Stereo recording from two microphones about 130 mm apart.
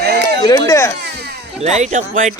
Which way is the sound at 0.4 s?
25° left (ahead or behind).